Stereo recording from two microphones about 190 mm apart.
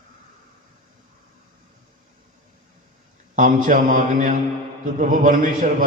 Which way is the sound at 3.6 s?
45° right (ahead or behind).